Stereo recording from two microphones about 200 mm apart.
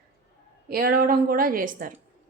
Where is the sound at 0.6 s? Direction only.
45° right (ahead or behind).